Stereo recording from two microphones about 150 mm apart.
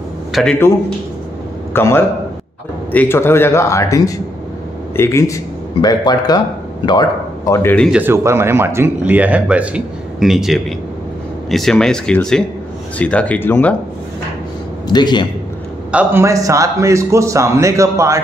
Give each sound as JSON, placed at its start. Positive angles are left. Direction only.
{"t": 0.3, "sound": "a man's voice", "side_deg": 0}
{"t": 1.7, "sound": "a man's voice", "side_deg": 15}
{"t": 7.9, "sound": "speech", "side_deg": -15}
{"t": 14.9, "sound": "a man's voice", "side_deg": 30}
{"t": 15.9, "sound": "a man's voice", "side_deg": -10}